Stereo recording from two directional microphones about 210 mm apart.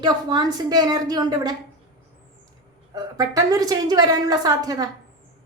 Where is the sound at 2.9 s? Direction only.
15° right (ahead or behind).